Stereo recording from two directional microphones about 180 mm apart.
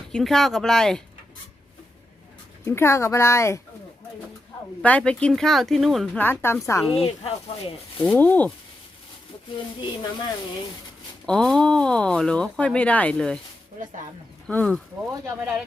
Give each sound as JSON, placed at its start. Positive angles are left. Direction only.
{"t": 0.1, "sound": "speech", "side_deg": 0}
{"t": 2.6, "sound": "speech", "side_deg": 15}
{"t": 4.8, "sound": "speech", "side_deg": 5}
{"t": 6.2, "sound": "speech", "side_deg": 10}
{"t": 6.9, "sound": "speech", "side_deg": 30}
{"t": 8.0, "sound": "speech", "side_deg": 10}
{"t": 11.3, "sound": "speech", "side_deg": 5}
{"t": 14.4, "sound": "speech", "side_deg": 5}